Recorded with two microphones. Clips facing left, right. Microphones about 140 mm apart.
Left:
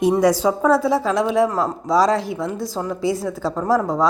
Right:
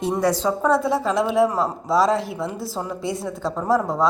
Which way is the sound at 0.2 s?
10° left (ahead or behind).